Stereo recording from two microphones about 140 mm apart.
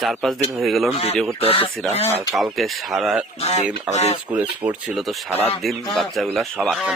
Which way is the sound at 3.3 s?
50° left (ahead or behind).